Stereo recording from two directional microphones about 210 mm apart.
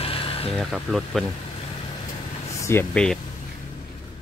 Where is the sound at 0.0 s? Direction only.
25° left (ahead or behind).